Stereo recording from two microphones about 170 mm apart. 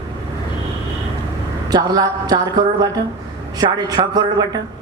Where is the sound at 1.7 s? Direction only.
25° right (ahead or behind).